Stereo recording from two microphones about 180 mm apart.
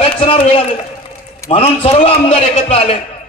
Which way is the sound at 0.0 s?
30° left (ahead or behind).